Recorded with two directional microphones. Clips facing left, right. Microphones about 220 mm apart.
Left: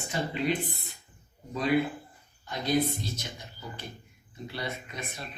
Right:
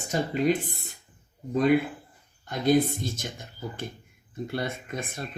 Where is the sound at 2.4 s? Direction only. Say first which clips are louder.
Right 5 dB; 50° right (ahead or behind).